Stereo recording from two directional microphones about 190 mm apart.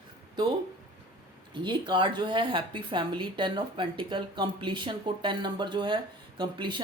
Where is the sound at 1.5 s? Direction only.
25° right (ahead or behind).